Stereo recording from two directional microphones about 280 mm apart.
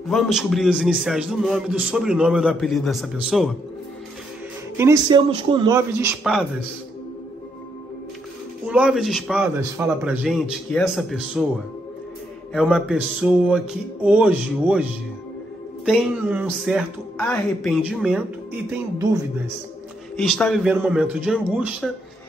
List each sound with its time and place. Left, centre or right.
0.1 s a man's voice: centre
4.7 s a man's voice: centre
8.6 s a man's voice: centre
12.5 s a man's voice: centre
20.2 s a man's voice: centre